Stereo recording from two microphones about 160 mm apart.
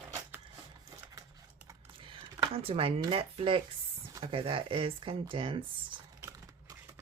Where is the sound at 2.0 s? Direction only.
35° right (ahead or behind).